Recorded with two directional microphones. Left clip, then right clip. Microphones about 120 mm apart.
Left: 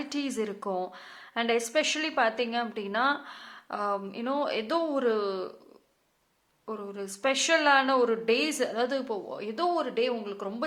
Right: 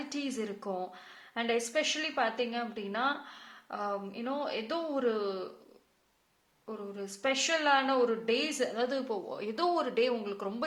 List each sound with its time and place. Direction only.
0.0 s a woman's voice: 30° left (ahead or behind)
6.7 s a woman's voice: 35° left (ahead or behind); by 10.6 s 10° left (ahead or behind)